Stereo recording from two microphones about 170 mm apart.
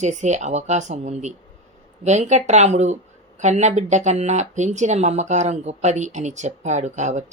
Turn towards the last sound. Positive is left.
turn(degrees=-45)  # may be behind; listen again after turning